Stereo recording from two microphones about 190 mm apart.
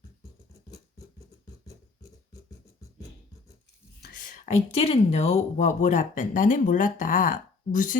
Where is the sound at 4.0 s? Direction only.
45° left (ahead or behind).